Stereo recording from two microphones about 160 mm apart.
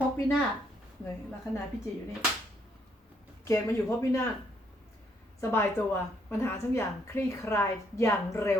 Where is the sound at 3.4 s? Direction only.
20° left (ahead or behind).